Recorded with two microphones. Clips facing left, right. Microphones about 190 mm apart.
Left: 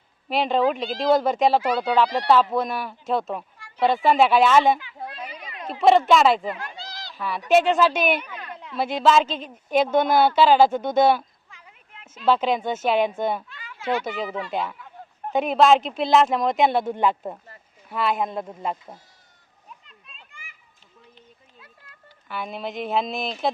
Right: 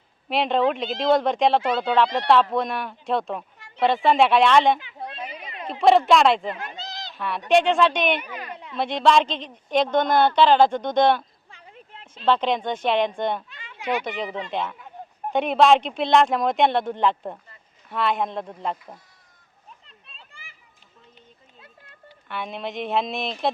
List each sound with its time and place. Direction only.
0.3 s a woman's voice: centre (ahead or behind)
5.0 s a sound: 25° right (ahead or behind)
5.8 s a woman's voice: centre (ahead or behind)
6.5 s a sound: 20° right (ahead or behind)
7.2 s a woman's voice: centre (ahead or behind)
8.2 s a woman's voice: 10° right (ahead or behind); by 11.3 s 5° left (ahead or behind)
11.4 s a sound: 35° right (ahead or behind)
12.2 s a woman's voice: 5° left (ahead or behind)
13.5 s a sound: 20° right (ahead or behind)
14.3 s speech: 20° right (ahead or behind)
14.5 s a woman's voice: 5° left (ahead or behind)
19.8 s children playing: 35° right (ahead or behind)
22.3 s a woman's voice: centre (ahead or behind)